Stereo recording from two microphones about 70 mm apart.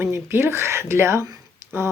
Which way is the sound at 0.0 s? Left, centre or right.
Right.